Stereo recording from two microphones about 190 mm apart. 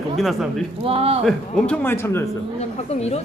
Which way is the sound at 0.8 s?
30° right (ahead or behind).